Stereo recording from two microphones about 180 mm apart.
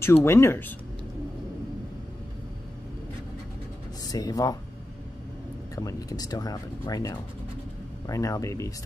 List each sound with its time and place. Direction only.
0.0 s speech: 15° left (ahead or behind)
4.0 s speech: 20° left (ahead or behind)
5.8 s speech: 20° left (ahead or behind)